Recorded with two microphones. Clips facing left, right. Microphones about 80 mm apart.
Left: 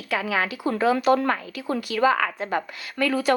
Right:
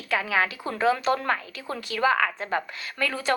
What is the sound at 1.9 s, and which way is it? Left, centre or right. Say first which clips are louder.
Speech: left 1 dB; right.